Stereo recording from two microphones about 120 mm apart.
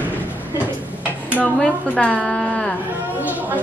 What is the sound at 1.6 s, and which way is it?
A woman's voice, 10° left (ahead or behind).